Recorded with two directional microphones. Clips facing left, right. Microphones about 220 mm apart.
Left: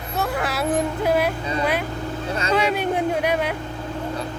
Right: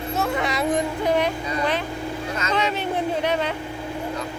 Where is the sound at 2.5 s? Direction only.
10° left (ahead or behind).